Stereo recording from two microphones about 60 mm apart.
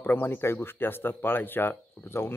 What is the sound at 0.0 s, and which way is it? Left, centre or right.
Speech, left.